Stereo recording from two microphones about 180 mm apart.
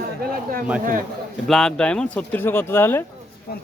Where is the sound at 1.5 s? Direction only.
5° left (ahead or behind).